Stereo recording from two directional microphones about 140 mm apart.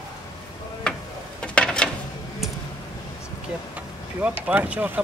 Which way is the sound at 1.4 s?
5° left (ahead or behind).